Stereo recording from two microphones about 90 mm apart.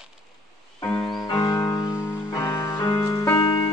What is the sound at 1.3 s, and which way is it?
Music, 35° left (ahead or behind).